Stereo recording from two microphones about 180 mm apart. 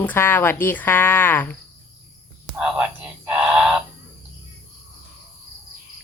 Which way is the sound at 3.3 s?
5° right (ahead or behind).